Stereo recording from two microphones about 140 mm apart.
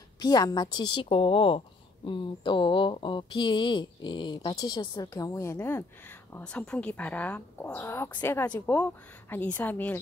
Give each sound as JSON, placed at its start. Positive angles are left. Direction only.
{"t": 0.2, "sound": "speech", "side_deg": 30}
{"t": 6.3, "sound": "speech", "side_deg": 5}